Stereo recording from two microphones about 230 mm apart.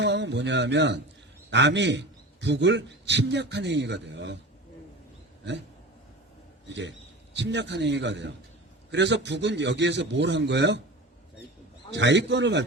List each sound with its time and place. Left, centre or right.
0.0 s a man's voice: right
6.7 s a man's voice: right
11.9 s a man's voice: right